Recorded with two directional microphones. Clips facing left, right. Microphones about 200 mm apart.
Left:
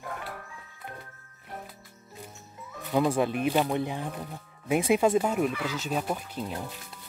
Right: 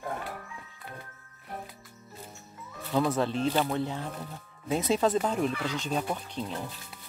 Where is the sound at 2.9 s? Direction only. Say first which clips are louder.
Left 2 dB; 15° left (ahead or behind).